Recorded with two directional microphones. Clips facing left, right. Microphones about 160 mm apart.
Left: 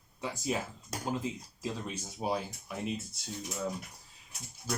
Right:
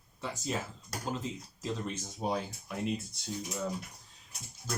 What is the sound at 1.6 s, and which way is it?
Speech, 5° left (ahead or behind).